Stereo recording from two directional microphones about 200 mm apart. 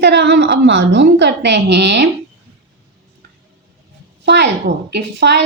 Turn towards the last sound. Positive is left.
turn(degrees=-60)  # may be behind; listen again after turning